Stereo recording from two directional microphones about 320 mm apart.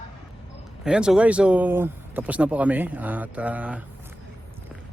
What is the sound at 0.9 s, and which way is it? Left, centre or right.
Speech, centre.